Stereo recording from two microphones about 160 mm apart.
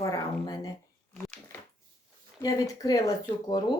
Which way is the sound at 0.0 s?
20° left (ahead or behind).